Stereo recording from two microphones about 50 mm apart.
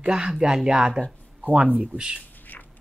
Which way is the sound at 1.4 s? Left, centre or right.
Right.